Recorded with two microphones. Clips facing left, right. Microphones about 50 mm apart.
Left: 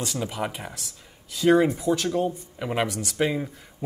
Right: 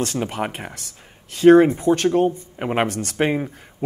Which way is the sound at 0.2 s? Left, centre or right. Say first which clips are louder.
Right 4 dB; right.